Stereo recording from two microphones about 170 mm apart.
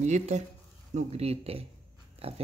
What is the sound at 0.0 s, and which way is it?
Speech, 45° right (ahead or behind).